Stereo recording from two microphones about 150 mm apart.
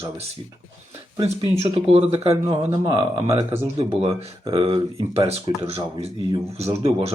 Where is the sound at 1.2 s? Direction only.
45° right (ahead or behind).